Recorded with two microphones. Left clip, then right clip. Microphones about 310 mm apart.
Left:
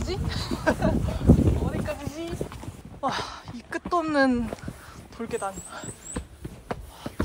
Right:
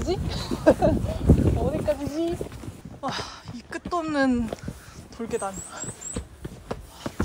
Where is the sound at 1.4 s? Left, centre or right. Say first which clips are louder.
Right 4 dB; centre.